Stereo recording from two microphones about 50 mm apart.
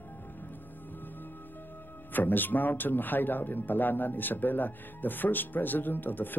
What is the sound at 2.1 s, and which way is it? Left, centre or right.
A man's voice, left.